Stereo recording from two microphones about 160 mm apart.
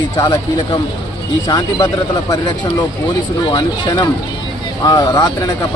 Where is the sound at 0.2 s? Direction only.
25° left (ahead or behind).